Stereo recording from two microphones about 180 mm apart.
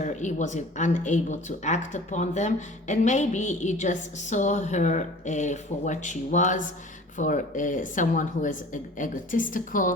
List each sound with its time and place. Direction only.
0.0 s speech: 40° left (ahead or behind)